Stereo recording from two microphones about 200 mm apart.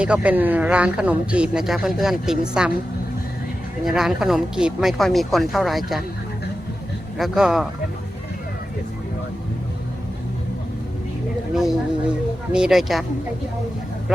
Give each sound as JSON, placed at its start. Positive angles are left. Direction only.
{"t": 0.0, "sound": "speech", "side_deg": -5}
{"t": 3.8, "sound": "speech", "side_deg": 0}
{"t": 7.2, "sound": "speech", "side_deg": 0}
{"t": 11.5, "sound": "speech", "side_deg": -5}